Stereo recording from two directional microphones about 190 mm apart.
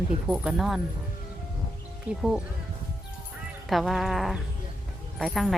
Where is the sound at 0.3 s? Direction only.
Centre (ahead or behind).